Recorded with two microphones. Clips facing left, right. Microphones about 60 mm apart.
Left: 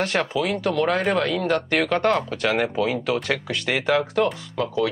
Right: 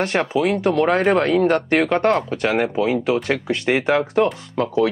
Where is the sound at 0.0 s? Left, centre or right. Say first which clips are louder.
Right 4 dB; right.